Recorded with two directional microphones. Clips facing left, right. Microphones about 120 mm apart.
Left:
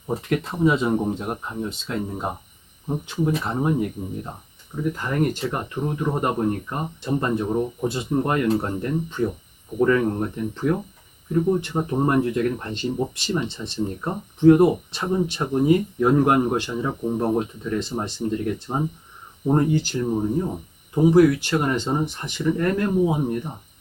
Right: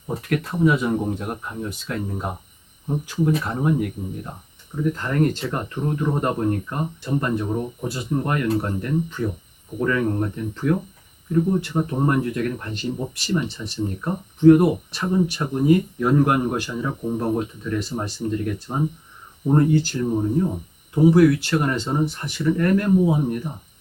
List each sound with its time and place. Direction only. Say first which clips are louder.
0.2 s speech: right 2 dB; 20° left (ahead or behind)
4.9 s speech: right 1 dB; 10° left (ahead or behind)